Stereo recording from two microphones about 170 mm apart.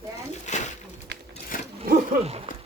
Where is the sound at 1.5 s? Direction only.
55° left (ahead or behind).